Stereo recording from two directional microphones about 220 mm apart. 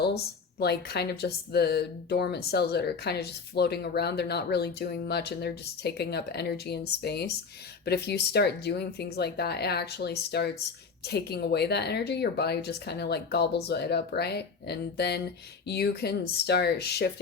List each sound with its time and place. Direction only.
0.6 s speech: 45° left (ahead or behind)